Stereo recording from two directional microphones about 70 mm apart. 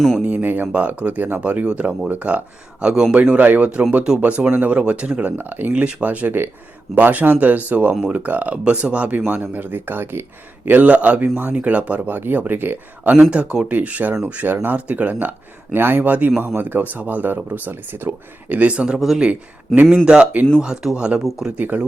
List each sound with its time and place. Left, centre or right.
0.2 s speech: right; by 3.2 s centre
3.2 s speech: right
4.4 s speech: right
4.7 s speech: centre
13.3 s speech: centre
18.9 s speech: centre
19.7 s speech: centre
20.6 s speech: centre
21.2 s speech: centre
21.6 s speech: right